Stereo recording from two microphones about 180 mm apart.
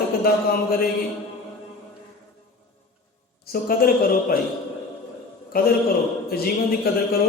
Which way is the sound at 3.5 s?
55° left (ahead or behind).